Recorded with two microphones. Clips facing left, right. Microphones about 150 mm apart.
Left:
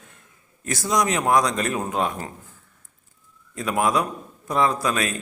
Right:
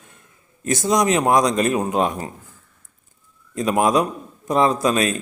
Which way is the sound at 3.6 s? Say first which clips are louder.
Right 4 dB; 20° right (ahead or behind).